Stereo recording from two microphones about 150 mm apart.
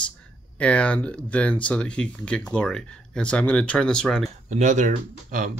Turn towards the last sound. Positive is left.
turn(degrees=-55)  # may be behind; listen again after turning